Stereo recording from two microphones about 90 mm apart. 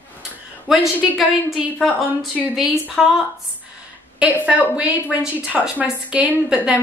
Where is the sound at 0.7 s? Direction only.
5° right (ahead or behind).